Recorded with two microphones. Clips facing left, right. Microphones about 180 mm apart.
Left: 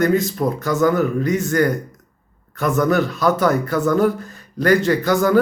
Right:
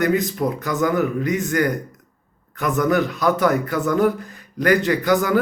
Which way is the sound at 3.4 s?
40° left (ahead or behind).